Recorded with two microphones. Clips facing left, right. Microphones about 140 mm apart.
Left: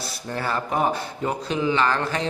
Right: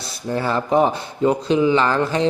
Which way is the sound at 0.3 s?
25° right (ahead or behind).